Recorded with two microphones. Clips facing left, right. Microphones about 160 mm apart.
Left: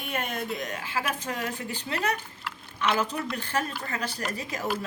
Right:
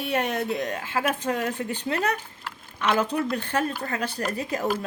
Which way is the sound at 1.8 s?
45° right (ahead or behind).